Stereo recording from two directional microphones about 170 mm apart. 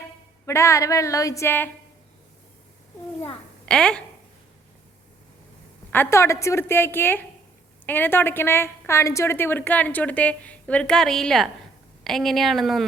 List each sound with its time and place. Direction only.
0.0 s a woman's voice: 15° left (ahead or behind)
3.7 s speech: 5° left (ahead or behind)
5.9 s a woman's voice: 15° left (ahead or behind)